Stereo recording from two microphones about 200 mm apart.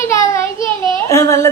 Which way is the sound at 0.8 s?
15° left (ahead or behind).